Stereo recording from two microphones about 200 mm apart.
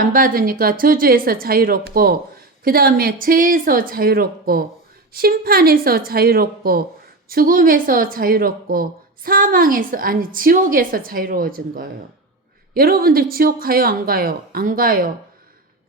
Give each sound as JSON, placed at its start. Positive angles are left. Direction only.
{"t": 0.0, "sound": "speech", "side_deg": -45}